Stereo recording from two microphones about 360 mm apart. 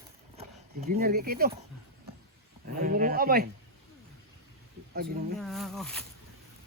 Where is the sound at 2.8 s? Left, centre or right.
Right.